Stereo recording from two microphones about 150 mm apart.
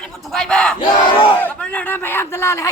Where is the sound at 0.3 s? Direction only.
5° left (ahead or behind).